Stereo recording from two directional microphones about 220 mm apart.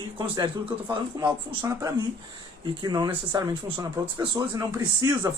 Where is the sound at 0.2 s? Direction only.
20° right (ahead or behind).